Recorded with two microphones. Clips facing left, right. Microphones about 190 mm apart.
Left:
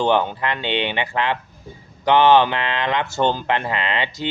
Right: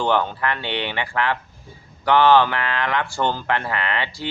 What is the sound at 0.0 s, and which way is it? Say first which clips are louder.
Speech: left 2 dB; 20° left (ahead or behind).